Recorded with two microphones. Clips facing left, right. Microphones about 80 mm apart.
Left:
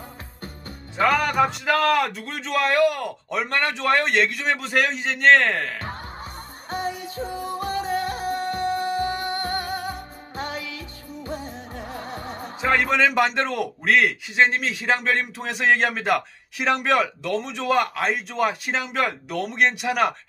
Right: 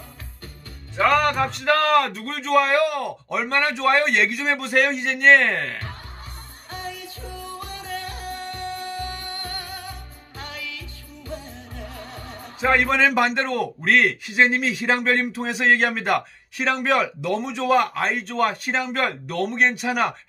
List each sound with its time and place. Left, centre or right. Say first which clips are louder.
0.9 s a man's voice: right 1 dB; centre
6.7 s music: left 6 dB; left
12.5 s a man's voice: right 1 dB; centre